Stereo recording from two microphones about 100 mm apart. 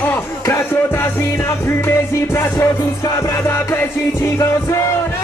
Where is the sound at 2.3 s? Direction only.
30° left (ahead or behind).